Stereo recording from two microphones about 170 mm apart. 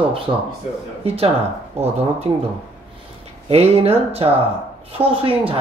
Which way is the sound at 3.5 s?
35° right (ahead or behind).